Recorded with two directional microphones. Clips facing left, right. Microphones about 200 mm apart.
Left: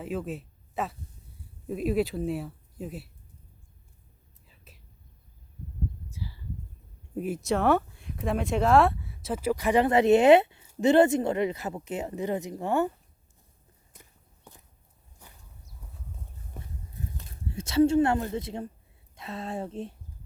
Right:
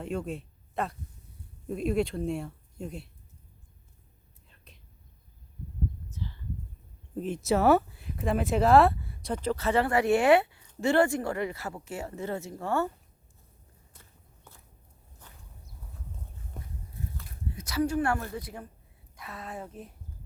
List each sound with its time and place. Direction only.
0.0 s speech: centre (ahead or behind)
4.4 s whispering: 5° left (ahead or behind)
6.1 s a sound: 10° left (ahead or behind)
7.4 s a woman's voice: 5° right (ahead or behind); by 12.9 s 15° left (ahead or behind)
13.9 s walk: 15° left (ahead or behind)
16.6 s a sound: 5° left (ahead or behind)
17.2 s a woman's voice: 25° left (ahead or behind)